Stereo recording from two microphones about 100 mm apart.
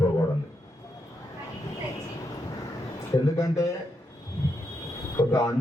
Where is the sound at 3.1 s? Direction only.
30° left (ahead or behind).